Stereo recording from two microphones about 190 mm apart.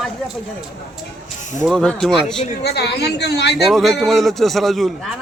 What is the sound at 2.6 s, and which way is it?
Speech, 60° left (ahead or behind).